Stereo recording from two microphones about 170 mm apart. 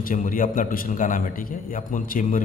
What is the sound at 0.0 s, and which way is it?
A man's voice, 55° left (ahead or behind).